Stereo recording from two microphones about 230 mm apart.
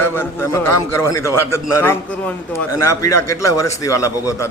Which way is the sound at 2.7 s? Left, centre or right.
Left.